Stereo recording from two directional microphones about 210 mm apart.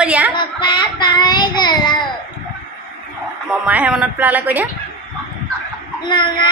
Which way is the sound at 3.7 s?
5° right (ahead or behind).